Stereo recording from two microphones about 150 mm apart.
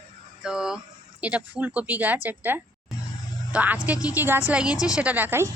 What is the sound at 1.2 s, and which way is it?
Speech, 10° right (ahead or behind).